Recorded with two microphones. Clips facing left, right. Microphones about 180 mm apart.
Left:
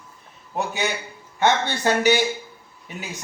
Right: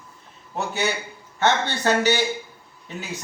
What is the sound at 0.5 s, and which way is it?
Speech, 15° left (ahead or behind).